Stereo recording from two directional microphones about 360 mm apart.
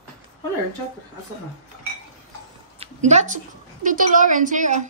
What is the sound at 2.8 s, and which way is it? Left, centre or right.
A woman's voice, centre.